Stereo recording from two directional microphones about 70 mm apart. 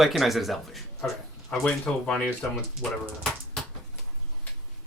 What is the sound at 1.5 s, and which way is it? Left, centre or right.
Speech, centre.